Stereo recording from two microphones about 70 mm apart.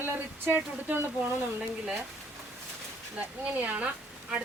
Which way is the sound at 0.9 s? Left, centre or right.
Right.